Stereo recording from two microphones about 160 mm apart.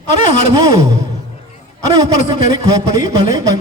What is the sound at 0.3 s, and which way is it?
Speech, 50° left (ahead or behind).